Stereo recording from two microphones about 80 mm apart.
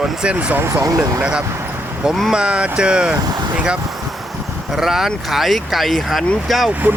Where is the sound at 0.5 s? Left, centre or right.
Right.